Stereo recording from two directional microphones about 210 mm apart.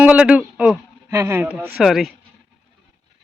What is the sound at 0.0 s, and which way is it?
A man's voice, 5° right (ahead or behind).